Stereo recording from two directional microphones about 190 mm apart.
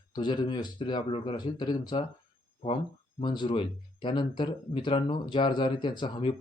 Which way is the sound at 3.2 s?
25° left (ahead or behind).